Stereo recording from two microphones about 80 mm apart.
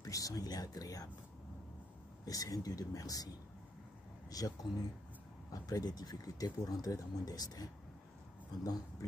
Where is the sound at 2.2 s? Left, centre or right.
Left.